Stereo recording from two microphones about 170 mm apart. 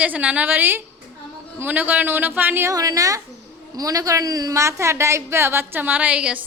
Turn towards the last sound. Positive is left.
turn(degrees=-10)  # may be behind; listen again after turning